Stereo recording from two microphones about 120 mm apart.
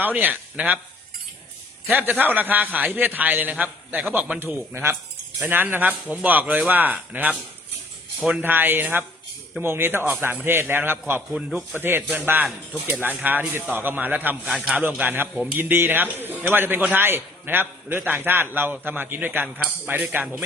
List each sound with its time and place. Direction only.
0.0 s a man's voice: 15° right (ahead or behind)
1.9 s a man's voice: 15° right (ahead or behind)
11.3 s a man's voice: 5° right (ahead or behind)
11.8 s a man's voice: 20° right (ahead or behind)
14.4 s a man's voice: 5° right (ahead or behind)
14.8 s a man's voice: 15° right (ahead or behind)